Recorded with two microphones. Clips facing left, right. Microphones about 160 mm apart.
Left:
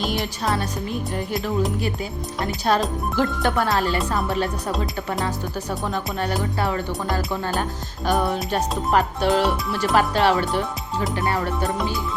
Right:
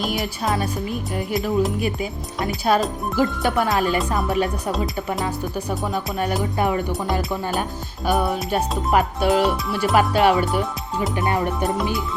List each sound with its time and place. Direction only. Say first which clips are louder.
0.0 s music: right 1 dB; centre (ahead or behind)
2.4 s speech: right 2 dB; 5° right (ahead or behind)